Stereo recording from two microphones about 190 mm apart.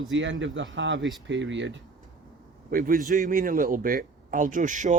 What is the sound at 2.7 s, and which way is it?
A man's voice, 50° right (ahead or behind).